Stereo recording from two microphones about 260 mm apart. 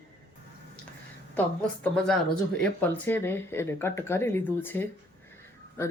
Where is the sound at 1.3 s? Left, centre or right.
Centre.